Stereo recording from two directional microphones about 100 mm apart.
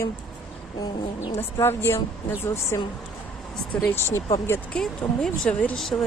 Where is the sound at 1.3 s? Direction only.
25° left (ahead or behind).